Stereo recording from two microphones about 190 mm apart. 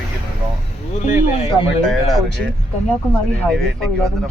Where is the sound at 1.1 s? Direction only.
35° left (ahead or behind).